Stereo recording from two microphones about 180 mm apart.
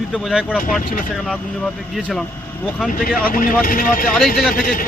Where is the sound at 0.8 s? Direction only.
50° left (ahead or behind).